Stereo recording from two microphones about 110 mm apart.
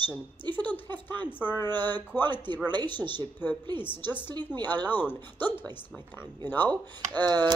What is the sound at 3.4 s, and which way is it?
Speech, 20° left (ahead or behind).